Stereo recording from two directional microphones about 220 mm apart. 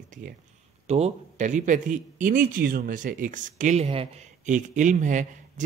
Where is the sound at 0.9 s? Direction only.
30° right (ahead or behind).